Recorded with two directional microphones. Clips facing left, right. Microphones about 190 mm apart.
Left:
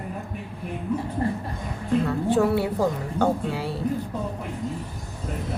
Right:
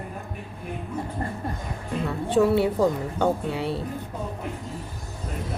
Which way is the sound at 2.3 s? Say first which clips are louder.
Right 3 dB; 25° right (ahead or behind).